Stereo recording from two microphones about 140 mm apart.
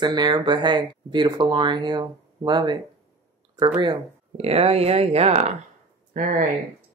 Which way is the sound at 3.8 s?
40° right (ahead or behind).